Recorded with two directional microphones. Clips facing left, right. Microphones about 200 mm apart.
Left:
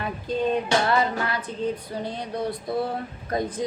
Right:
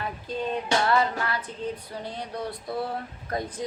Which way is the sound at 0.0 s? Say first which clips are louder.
Left 5 dB; 20° left (ahead or behind).